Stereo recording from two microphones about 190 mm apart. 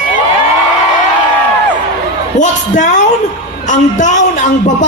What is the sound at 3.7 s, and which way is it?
A woman's voice, 40° left (ahead or behind).